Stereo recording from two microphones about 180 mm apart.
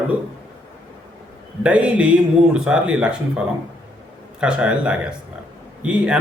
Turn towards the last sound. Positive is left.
turn(degrees=-5)  # may be behind; listen again after turning